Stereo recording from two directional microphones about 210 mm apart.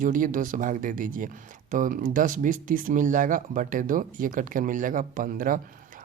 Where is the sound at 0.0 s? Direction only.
40° right (ahead or behind).